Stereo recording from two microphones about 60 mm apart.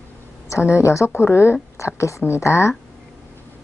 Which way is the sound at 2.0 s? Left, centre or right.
Left.